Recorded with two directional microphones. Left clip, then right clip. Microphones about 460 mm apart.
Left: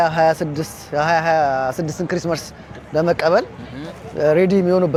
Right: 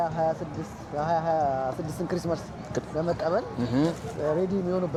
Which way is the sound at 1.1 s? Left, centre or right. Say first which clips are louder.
Left 8 dB; left.